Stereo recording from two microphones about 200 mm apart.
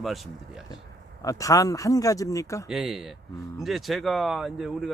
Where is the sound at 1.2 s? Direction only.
15° left (ahead or behind).